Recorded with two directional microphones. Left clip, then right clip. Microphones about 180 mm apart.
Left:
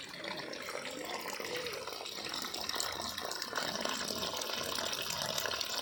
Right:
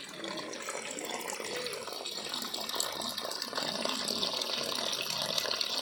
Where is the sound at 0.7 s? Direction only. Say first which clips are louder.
Right 2 dB; 50° right (ahead or behind).